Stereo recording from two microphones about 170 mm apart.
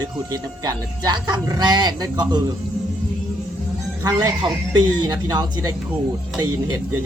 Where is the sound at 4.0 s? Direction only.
25° right (ahead or behind).